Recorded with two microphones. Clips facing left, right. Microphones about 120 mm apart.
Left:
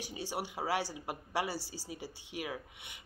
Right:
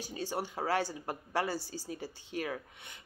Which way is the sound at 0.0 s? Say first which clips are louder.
Right 2 dB; 15° left (ahead or behind).